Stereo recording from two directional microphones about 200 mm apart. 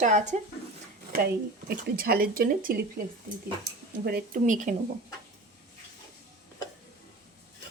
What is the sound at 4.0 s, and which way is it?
Speech, 55° right (ahead or behind).